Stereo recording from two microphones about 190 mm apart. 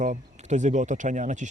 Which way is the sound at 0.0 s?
40° right (ahead or behind).